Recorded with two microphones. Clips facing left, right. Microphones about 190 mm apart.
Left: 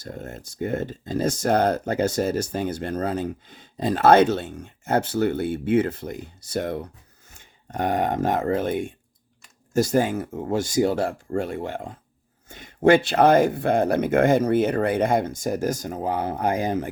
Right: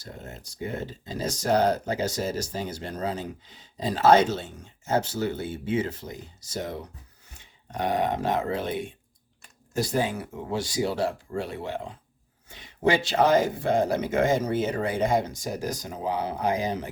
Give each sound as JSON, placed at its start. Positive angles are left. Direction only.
{"t": 0.0, "sound": "speech", "side_deg": 50}